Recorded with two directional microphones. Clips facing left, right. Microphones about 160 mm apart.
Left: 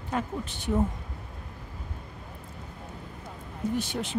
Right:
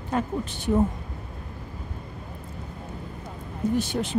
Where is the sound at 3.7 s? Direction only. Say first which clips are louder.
Right 5 dB; 40° right (ahead or behind).